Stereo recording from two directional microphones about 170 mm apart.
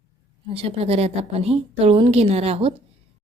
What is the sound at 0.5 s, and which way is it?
A woman's voice, 35° right (ahead or behind).